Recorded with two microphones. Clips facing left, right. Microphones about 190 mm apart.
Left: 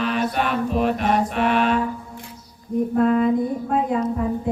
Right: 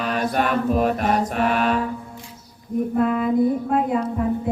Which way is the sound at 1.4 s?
45° right (ahead or behind).